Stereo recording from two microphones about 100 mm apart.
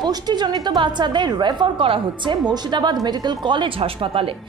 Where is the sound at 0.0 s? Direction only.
45° right (ahead or behind); by 4.3 s 65° right (ahead or behind).